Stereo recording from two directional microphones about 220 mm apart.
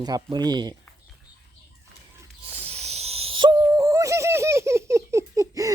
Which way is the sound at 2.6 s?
30° right (ahead or behind).